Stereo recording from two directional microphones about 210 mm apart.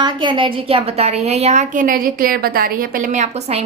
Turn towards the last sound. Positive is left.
turn(degrees=-30)  # may be behind; listen again after turning